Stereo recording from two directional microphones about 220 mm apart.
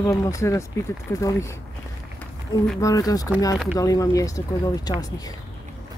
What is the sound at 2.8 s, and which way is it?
Speech, 15° left (ahead or behind).